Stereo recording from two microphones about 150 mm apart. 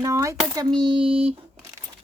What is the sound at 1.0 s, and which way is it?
Speech, 40° right (ahead or behind).